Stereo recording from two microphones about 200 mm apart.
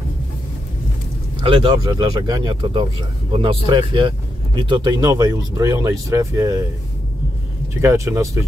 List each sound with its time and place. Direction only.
1.4 s speech: 25° right (ahead or behind)
7.8 s speech: 15° right (ahead or behind)